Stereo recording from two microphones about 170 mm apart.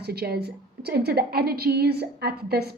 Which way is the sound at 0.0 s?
70° right (ahead or behind).